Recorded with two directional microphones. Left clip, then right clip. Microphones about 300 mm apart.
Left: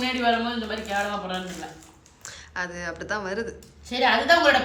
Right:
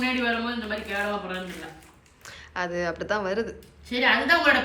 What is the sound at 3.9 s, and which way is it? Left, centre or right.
Speech, left.